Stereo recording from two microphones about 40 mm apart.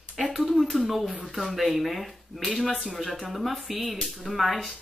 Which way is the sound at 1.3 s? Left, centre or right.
Centre.